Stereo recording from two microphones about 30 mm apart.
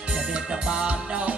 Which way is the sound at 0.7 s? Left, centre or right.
Right.